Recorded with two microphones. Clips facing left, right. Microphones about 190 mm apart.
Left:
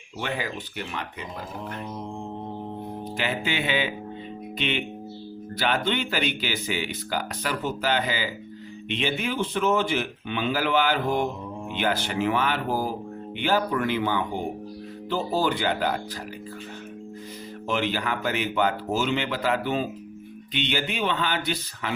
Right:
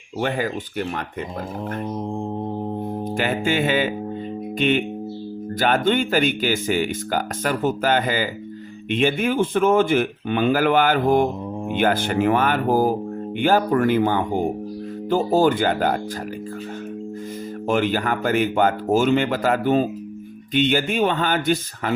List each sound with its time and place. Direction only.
0.2 s speech: 50° right (ahead or behind)
3.2 s speech: 50° right (ahead or behind)
17.7 s speech: 50° right (ahead or behind)